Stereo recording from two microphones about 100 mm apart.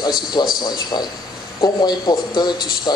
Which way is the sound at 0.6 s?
45° left (ahead or behind).